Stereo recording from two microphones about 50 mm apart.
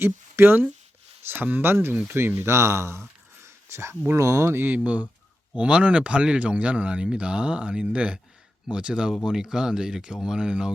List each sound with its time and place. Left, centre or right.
0.0 s speech: right
1.7 s speech: right
3.4 s a sound: right
4.2 s speech: right
4.7 s speech: right; by 10.7 s centre